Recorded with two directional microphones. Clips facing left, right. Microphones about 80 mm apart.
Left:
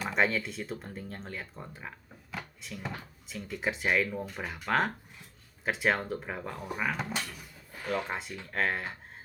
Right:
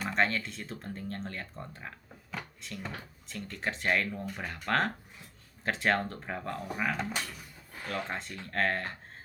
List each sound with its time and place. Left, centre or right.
0.0 s speech: centre
7.2 s a sound: centre
7.9 s speech: centre